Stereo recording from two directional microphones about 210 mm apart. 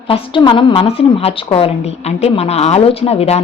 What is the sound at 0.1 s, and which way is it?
A woman's voice, 25° left (ahead or behind).